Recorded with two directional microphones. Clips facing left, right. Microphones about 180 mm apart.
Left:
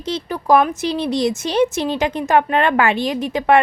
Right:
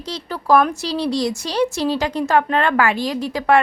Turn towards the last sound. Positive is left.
turn(degrees=20)  # may be behind; listen again after turning